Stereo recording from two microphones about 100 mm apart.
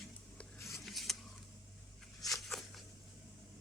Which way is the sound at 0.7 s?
Centre (ahead or behind).